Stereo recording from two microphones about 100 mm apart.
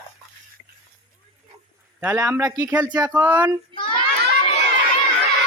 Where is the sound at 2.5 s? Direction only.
40° right (ahead or behind).